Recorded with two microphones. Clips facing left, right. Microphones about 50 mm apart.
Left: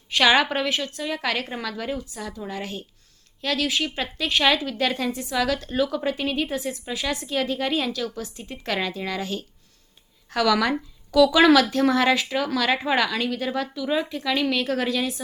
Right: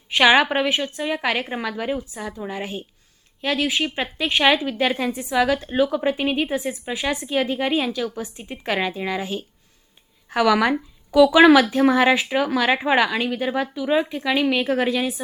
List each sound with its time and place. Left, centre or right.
0.1 s a woman's voice: centre